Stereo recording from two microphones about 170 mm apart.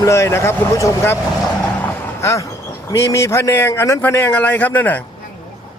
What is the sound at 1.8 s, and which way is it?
Vehicle, 15° left (ahead or behind).